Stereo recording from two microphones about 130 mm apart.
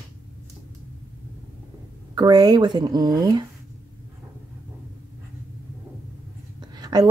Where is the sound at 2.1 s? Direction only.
30° right (ahead or behind).